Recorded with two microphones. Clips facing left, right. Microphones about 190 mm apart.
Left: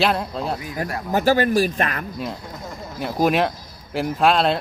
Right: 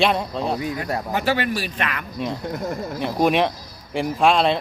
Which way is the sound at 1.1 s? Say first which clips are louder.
Left 6 dB; 40° left (ahead or behind).